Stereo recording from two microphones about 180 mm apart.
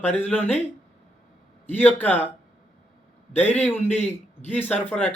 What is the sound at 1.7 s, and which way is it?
Speech, 10° left (ahead or behind).